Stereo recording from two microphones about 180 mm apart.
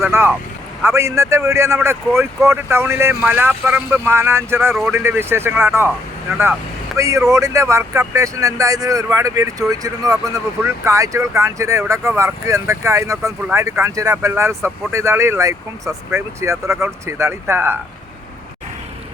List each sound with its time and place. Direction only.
0.0 s speech: 15° right (ahead or behind)
6.9 s speech: 15° right (ahead or behind)